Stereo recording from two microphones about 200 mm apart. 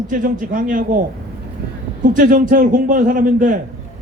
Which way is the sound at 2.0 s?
40° right (ahead or behind).